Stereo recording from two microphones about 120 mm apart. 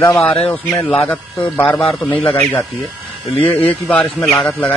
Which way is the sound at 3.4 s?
15° left (ahead or behind).